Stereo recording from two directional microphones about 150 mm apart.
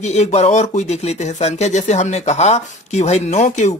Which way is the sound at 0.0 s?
50° left (ahead or behind).